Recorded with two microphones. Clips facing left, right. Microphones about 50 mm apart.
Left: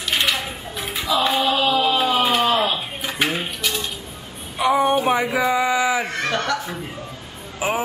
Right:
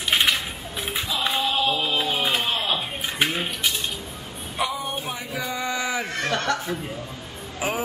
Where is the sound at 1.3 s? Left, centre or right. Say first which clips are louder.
Left 5 dB; left.